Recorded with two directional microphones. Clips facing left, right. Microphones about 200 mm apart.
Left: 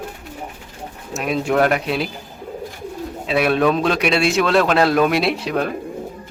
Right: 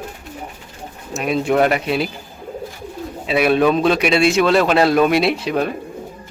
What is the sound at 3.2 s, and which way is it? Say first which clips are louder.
A man's voice: right 2 dB; 5° right (ahead or behind).